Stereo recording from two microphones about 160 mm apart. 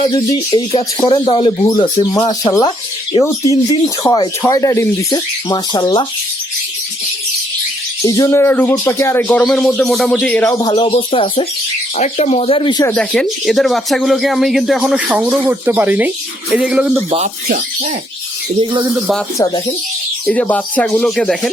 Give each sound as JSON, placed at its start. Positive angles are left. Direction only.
{"t": 0.0, "sound": "speech", "side_deg": 25}
{"t": 8.0, "sound": "speech", "side_deg": 20}
{"t": 9.2, "sound": "speech", "side_deg": 5}
{"t": 10.4, "sound": "speech", "side_deg": 25}
{"t": 13.0, "sound": "speech", "side_deg": 0}
{"t": 18.6, "sound": "speech", "side_deg": -30}
{"t": 19.4, "sound": "speech", "side_deg": 25}
{"t": 20.2, "sound": "speech", "side_deg": 10}